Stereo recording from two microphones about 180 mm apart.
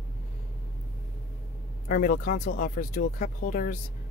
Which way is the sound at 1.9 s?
55° left (ahead or behind).